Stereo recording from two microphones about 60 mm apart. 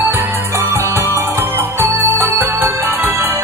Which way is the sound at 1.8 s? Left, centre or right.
Right.